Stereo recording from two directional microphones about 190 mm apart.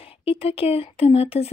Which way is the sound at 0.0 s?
30° left (ahead or behind).